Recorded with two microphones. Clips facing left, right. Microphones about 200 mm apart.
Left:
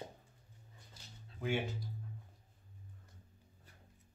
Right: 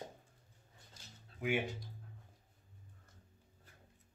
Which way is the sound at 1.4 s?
15° right (ahead or behind).